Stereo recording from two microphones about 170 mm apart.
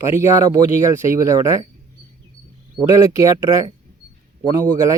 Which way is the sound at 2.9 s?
20° right (ahead or behind).